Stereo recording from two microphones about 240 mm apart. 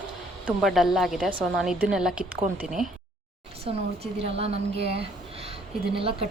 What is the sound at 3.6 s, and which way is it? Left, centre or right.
A woman's voice, right.